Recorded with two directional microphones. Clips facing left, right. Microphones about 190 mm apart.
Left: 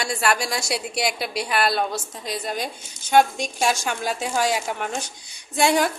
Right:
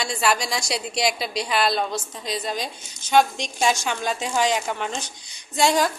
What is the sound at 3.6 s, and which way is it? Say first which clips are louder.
A woman's voice: right 1 dB; 5° left (ahead or behind).